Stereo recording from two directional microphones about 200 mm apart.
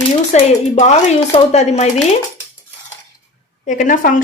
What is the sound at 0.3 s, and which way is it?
A woman's voice, 35° left (ahead or behind).